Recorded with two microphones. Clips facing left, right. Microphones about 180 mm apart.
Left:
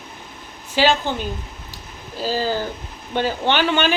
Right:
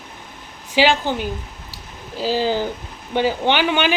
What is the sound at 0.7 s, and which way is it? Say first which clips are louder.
Speech: right 1 dB; 15° right (ahead or behind).